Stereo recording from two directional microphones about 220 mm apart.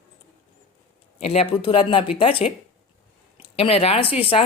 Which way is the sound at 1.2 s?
25° left (ahead or behind).